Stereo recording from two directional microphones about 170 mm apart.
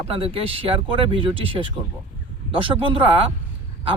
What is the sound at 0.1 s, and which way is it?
Speech, 35° right (ahead or behind).